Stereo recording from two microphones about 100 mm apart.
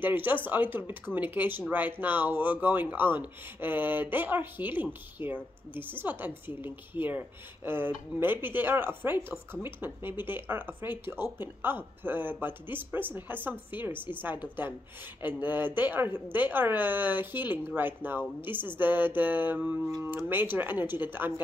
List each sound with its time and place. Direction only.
0.0 s speech: 20° right (ahead or behind)